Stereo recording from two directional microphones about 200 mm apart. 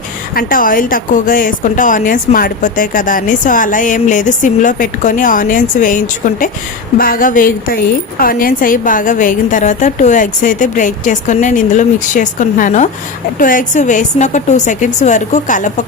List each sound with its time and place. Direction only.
0.3 s a woman's voice: 45° left (ahead or behind)